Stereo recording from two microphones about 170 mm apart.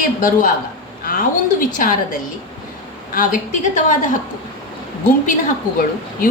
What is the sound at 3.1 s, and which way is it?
Speech, 50° left (ahead or behind).